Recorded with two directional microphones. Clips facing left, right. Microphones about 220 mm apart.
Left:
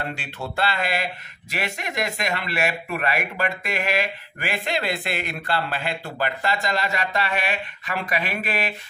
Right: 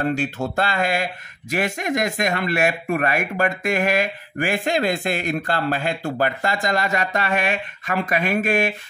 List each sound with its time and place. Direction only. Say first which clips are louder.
0.1 s speech: right 9 dB; 45° right (ahead or behind)